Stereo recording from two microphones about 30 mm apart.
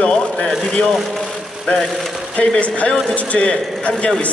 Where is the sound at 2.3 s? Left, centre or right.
Left.